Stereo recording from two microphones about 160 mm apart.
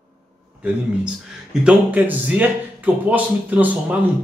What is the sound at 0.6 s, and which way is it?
Speech, 5° right (ahead or behind).